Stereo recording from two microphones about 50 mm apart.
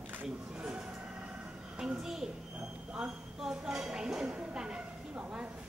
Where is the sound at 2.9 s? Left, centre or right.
Centre.